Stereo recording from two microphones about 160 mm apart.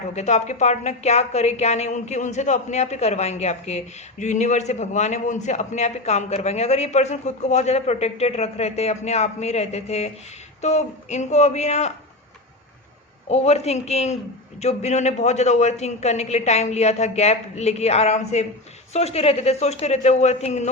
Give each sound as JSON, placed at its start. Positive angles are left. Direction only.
{"t": 0.1, "sound": "speech", "side_deg": 45}
{"t": 13.2, "sound": "speech", "side_deg": 45}